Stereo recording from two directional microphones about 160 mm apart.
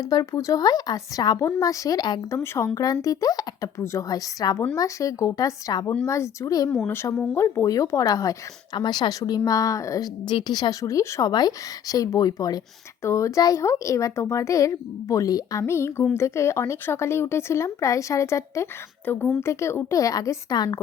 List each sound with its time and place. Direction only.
0.1 s speech: 20° left (ahead or behind)